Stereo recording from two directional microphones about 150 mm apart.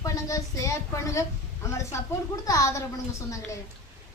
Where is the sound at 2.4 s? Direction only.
20° left (ahead or behind).